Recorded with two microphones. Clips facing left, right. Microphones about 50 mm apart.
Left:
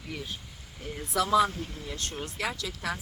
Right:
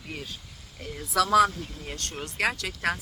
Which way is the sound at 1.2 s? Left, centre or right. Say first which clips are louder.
Right 3 dB; right.